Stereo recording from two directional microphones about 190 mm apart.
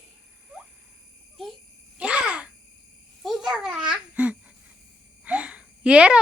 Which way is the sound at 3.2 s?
Centre (ahead or behind).